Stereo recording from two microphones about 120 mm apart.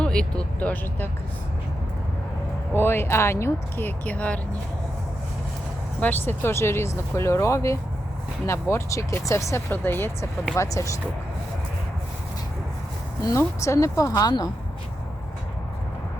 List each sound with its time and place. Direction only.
0.0 s speech: 10° left (ahead or behind)
2.7 s speech: 20° left (ahead or behind)
6.0 s speech: 15° left (ahead or behind)
13.2 s speech: 25° left (ahead or behind)